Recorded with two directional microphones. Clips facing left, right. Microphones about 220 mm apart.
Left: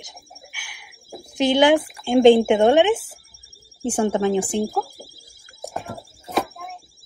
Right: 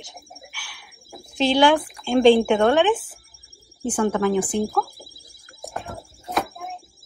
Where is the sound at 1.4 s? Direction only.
20° left (ahead or behind).